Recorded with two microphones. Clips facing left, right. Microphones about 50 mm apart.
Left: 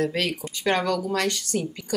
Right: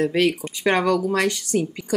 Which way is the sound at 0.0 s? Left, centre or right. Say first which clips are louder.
Right 6 dB; centre.